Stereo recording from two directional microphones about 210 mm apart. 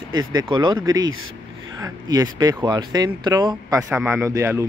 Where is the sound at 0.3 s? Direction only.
20° right (ahead or behind).